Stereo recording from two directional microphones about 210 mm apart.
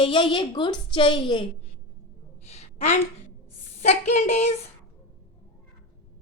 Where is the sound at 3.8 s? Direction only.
30° left (ahead or behind).